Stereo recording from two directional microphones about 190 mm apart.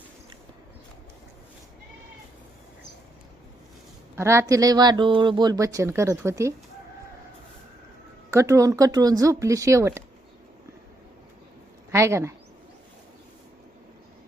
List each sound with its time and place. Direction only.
4.1 s speech: 15° right (ahead or behind)
8.3 s speech: 15° right (ahead or behind)
11.9 s speech: 15° right (ahead or behind)